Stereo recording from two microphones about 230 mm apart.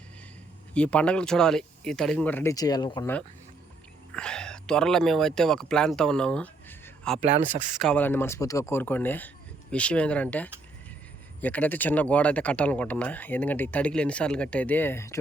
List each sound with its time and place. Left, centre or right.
0.7 s speech: centre
4.1 s speech: centre
7.2 s speech: right
7.8 s speech: centre